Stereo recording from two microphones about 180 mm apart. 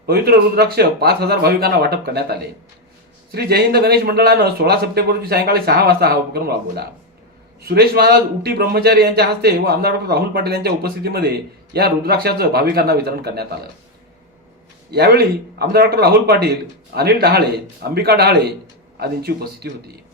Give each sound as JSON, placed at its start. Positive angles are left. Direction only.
{"t": 0.0, "sound": "a man's voice", "side_deg": -60}
{"t": 14.8, "sound": "a man's voice", "side_deg": -60}